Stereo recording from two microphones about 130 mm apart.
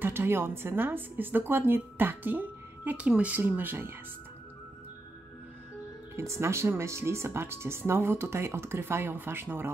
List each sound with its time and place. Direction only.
0.0 s a woman's voice: 15° right (ahead or behind)
6.1 s speech: 20° right (ahead or behind)